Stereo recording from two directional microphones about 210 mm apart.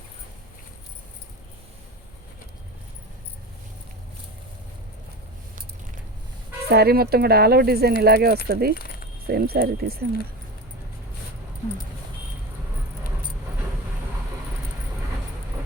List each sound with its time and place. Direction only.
6.7 s speech: 50° right (ahead or behind)
8.7 s speech: 45° left (ahead or behind)
9.2 s speech: 45° right (ahead or behind)